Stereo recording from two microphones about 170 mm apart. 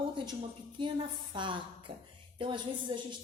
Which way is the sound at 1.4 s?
30° right (ahead or behind).